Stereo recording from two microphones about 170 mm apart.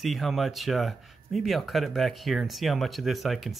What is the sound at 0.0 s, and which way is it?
Speech, centre (ahead or behind).